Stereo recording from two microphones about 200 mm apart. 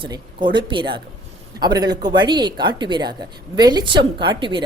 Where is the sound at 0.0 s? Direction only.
25° right (ahead or behind).